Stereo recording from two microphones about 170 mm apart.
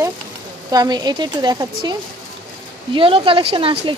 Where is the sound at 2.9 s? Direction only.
30° right (ahead or behind).